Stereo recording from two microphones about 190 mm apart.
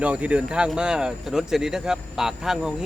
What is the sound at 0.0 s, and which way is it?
Speech, 5° right (ahead or behind).